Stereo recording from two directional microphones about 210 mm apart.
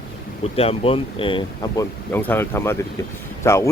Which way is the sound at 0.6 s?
25° left (ahead or behind).